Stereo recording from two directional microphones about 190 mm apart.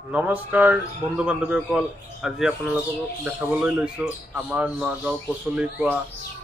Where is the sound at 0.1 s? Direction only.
5° right (ahead or behind).